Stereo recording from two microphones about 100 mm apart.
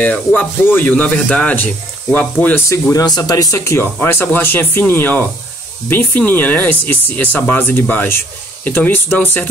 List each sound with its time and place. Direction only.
0.0 s speech: 15° left (ahead or behind)
2.7 s speech: 35° left (ahead or behind)
3.5 s speech: 25° left (ahead or behind)